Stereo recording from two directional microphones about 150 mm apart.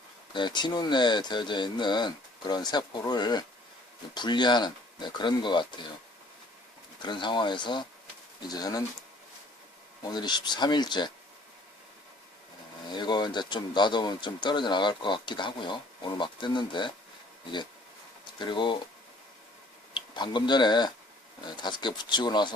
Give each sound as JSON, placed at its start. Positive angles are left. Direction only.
{"t": 0.3, "sound": "speech", "side_deg": 30}
{"t": 7.0, "sound": "speech", "side_deg": 30}
{"t": 10.0, "sound": "speech", "side_deg": 30}
{"t": 12.9, "sound": "speech", "side_deg": 30}
{"t": 18.3, "sound": "speech", "side_deg": 30}
{"t": 19.9, "sound": "speech", "side_deg": 30}